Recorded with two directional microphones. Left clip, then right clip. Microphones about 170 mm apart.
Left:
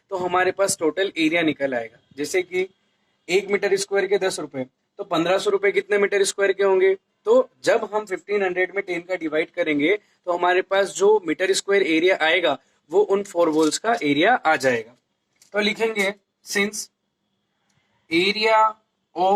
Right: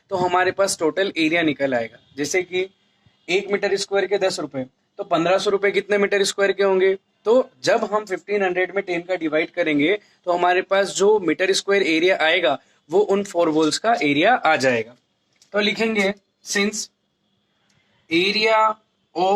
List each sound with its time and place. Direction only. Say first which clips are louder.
0.1 s speech: right 2 dB; 20° right (ahead or behind)
18.1 s speech: right 1 dB; 20° right (ahead or behind)